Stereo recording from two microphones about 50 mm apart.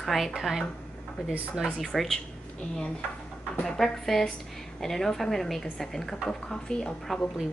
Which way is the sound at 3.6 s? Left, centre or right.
Centre.